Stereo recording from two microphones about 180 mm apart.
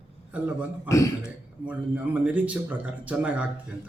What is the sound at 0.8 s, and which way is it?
Speech, 15° left (ahead or behind).